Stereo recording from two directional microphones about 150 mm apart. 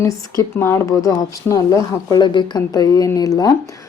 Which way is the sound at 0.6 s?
20° left (ahead or behind).